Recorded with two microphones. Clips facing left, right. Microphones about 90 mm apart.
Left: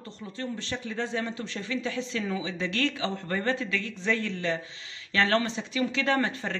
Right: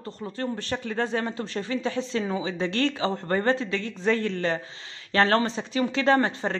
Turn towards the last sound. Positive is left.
turn(degrees=-35)  # may be behind; listen again after turning